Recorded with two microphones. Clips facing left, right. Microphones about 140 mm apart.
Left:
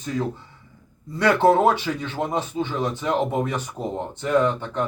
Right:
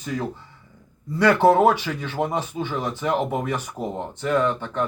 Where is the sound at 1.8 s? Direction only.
15° left (ahead or behind).